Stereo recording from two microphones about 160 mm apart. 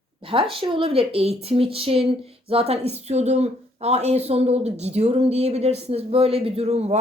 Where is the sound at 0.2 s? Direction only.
35° right (ahead or behind).